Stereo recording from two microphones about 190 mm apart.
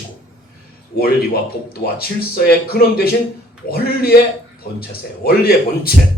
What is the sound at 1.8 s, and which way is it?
A man's voice, 55° left (ahead or behind).